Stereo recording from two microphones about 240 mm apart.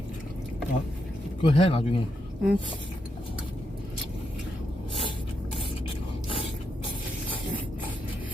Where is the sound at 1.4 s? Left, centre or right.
Left.